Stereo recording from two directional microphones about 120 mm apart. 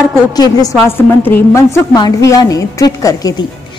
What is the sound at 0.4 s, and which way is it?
Speech, 30° left (ahead or behind).